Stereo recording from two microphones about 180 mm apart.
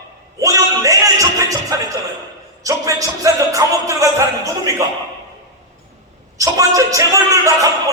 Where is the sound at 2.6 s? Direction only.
20° right (ahead or behind).